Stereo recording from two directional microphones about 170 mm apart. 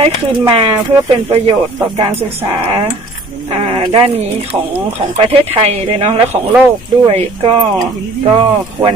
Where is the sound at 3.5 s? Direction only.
30° right (ahead or behind).